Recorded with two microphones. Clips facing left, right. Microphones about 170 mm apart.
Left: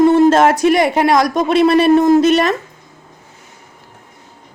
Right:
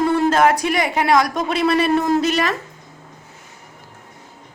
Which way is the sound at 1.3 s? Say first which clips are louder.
Left 7 dB; 25° left (ahead or behind).